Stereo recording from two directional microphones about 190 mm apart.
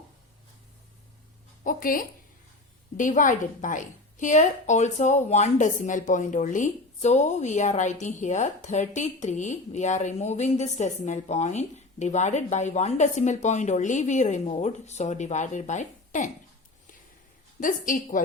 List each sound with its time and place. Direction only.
1.6 s a sound: 45° left (ahead or behind)
3.0 s a woman's voice: 45° left (ahead or behind)
17.6 s a woman's voice: 45° left (ahead or behind)